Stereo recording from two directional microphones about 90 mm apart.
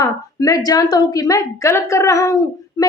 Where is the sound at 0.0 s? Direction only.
40° left (ahead or behind).